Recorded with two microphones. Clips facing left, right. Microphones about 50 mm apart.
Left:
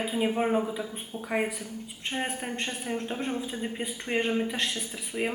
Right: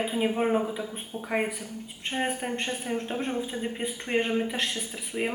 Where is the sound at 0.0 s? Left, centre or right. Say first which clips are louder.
Right 1 dB; centre.